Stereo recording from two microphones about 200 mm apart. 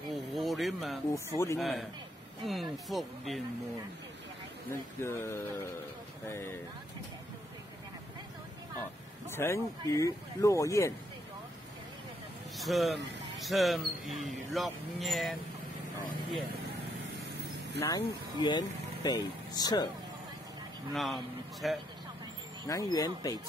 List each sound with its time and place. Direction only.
0.1 s a sound: centre (ahead or behind)
1.1 s speech: 15° left (ahead or behind)
1.6 s speech: centre (ahead or behind)
4.6 s speech: 10° left (ahead or behind)
9.3 s speech: 10° left (ahead or behind)
12.5 s speech: centre (ahead or behind)
17.7 s speech: 15° left (ahead or behind)
20.9 s speech: centre (ahead or behind)
22.7 s speech: 15° left (ahead or behind)